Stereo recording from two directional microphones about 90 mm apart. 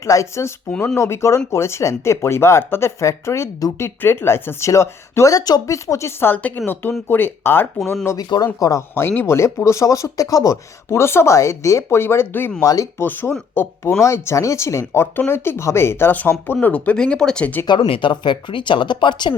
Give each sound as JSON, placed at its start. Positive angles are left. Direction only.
{"t": 0.0, "sound": "speech", "side_deg": 35}
{"t": 8.0, "sound": "speech", "side_deg": 40}
{"t": 12.6, "sound": "speech", "side_deg": 40}
{"t": 13.0, "sound": "speech", "side_deg": 25}
{"t": 17.8, "sound": "speech", "side_deg": 80}